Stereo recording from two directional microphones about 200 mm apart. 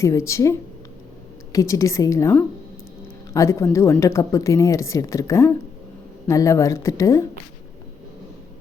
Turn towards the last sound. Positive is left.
turn(degrees=15)  # may be behind; listen again after turning